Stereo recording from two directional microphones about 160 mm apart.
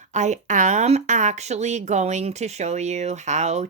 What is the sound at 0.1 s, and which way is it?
Speech, 45° right (ahead or behind).